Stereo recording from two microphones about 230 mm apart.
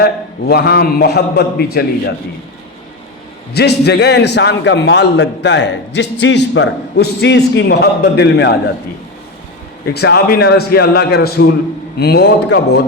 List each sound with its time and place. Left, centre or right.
0.0 s a man's voice: left
3.5 s a man's voice: left
9.9 s a man's voice: left